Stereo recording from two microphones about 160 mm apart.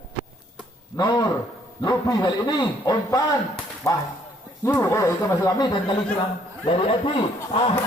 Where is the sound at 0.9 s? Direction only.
25° left (ahead or behind).